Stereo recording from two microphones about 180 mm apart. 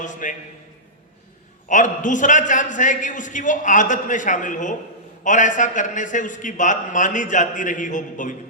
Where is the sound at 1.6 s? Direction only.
45° left (ahead or behind).